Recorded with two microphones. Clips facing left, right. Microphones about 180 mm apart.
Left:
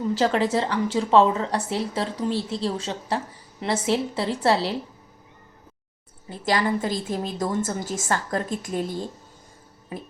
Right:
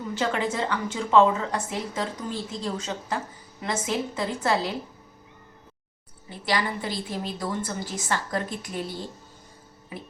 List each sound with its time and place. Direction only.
0.1 s a woman's voice: 35° left (ahead or behind)
6.4 s a woman's voice: 45° left (ahead or behind)